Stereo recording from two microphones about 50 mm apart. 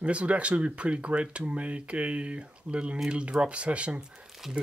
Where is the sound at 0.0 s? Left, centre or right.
Right.